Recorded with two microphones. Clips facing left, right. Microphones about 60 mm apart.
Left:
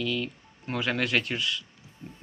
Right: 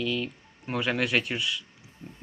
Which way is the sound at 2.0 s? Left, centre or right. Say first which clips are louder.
Left 1 dB; right.